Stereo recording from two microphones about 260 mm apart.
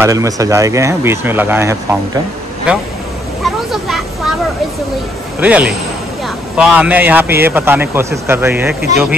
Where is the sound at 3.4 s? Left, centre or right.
Centre.